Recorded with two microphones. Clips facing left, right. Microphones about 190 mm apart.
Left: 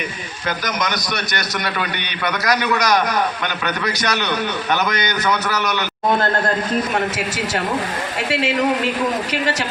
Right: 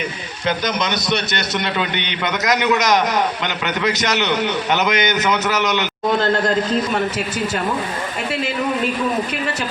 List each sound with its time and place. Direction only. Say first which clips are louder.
0.4 s a man's voice: right 3 dB; 25° right (ahead or behind)
8.3 s a man's voice: left 4 dB; 80° left